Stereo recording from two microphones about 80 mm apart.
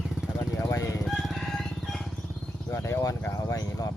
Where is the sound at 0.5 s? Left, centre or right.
Left.